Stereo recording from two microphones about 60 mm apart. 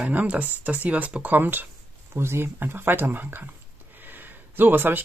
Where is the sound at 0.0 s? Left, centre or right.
Right.